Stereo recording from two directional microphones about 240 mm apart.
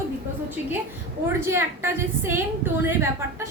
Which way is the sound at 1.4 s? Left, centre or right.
Centre.